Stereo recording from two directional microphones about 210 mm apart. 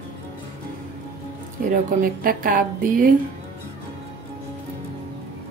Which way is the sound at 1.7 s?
40° right (ahead or behind).